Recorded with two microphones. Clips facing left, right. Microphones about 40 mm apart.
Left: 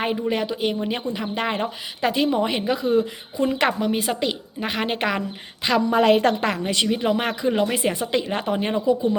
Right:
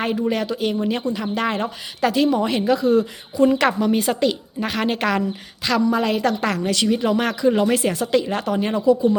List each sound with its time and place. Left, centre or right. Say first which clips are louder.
0.0 s speech: right 2 dB; centre
5.9 s a woman's voice: left 3 dB; left
6.8 s speech: right 3 dB; centre